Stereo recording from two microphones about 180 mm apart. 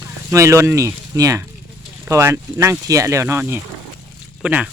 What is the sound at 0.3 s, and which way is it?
Speech, 15° right (ahead or behind).